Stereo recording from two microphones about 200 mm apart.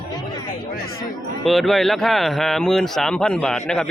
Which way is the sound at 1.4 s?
Centre (ahead or behind).